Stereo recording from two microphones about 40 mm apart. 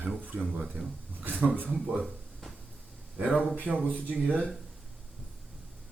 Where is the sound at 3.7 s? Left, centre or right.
Right.